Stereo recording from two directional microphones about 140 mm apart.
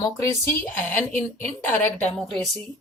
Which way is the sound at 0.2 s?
15° left (ahead or behind).